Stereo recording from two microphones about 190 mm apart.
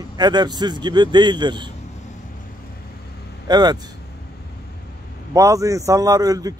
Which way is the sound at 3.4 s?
20° right (ahead or behind).